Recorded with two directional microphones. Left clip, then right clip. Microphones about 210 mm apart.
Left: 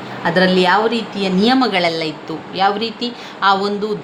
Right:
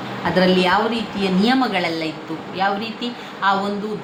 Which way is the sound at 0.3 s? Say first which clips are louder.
Left 3 dB; 40° left (ahead or behind).